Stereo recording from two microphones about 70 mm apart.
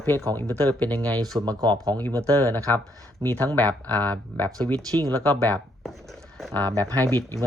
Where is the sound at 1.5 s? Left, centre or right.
Right.